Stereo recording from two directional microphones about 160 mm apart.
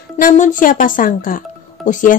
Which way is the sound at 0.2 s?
55° left (ahead or behind).